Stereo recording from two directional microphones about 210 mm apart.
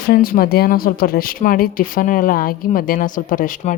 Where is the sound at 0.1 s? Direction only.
45° left (ahead or behind).